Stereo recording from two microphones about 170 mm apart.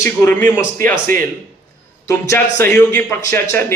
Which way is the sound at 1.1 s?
55° right (ahead or behind).